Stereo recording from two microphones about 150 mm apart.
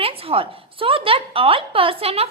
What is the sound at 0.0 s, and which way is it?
A woman's voice, 40° right (ahead or behind).